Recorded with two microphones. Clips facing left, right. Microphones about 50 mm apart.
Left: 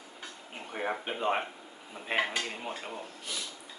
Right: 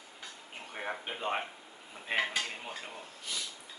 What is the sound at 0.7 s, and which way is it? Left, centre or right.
Speech, centre.